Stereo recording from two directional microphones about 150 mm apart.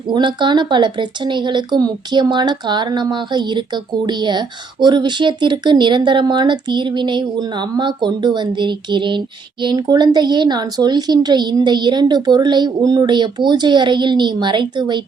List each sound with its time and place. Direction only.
0.1 s speech: 30° right (ahead or behind)